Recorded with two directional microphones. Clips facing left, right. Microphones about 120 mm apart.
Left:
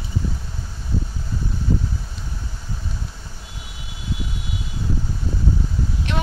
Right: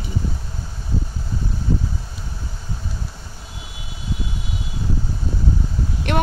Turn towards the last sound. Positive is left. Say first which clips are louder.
# right 6 dB
turn(degrees=-55)  # may be behind; listen again after turning